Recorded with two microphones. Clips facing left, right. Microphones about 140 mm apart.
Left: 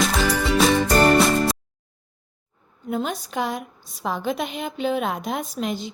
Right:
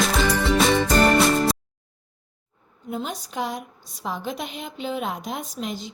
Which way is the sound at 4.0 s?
65° left (ahead or behind).